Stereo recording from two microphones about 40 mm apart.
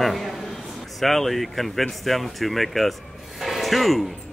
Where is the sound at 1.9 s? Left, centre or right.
Centre.